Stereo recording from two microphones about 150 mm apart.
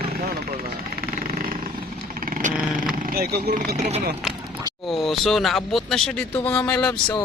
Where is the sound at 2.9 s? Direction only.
70° right (ahead or behind); by 3.8 s 90° right.